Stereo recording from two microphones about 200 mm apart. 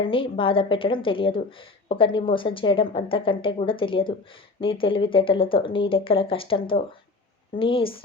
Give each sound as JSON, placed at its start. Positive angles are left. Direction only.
{"t": 0.0, "sound": "speech", "side_deg": 25}